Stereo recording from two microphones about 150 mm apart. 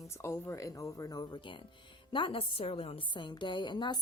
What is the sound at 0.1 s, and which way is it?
A woman's voice, 20° left (ahead or behind).